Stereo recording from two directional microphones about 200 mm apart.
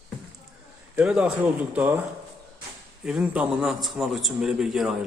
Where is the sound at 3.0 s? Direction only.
5° right (ahead or behind).